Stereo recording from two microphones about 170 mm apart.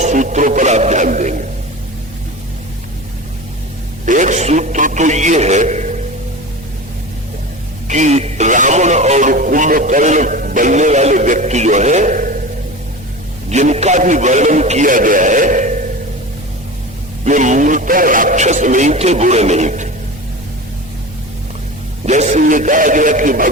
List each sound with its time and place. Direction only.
0.0 s music: 45° right (ahead or behind)
4.0 s a sound: 45° right (ahead or behind)
7.9 s radio: 45° right (ahead or behind)
13.5 s a man's voice: 40° right (ahead or behind)
17.2 s speech: 45° right (ahead or behind)
22.0 s speech: 40° right (ahead or behind)